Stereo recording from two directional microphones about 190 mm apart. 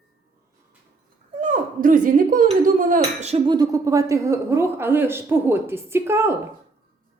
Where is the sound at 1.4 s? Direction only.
45° right (ahead or behind).